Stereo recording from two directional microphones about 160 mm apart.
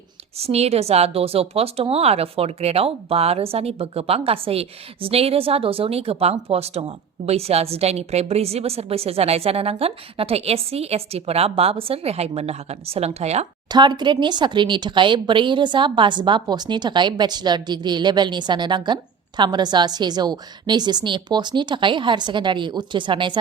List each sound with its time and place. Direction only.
0.3 s a woman's voice: 40° right (ahead or behind)
13.7 s speech: 25° right (ahead or behind)